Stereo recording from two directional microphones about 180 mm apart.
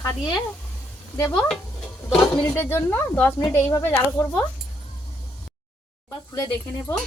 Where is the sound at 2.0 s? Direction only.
Centre (ahead or behind).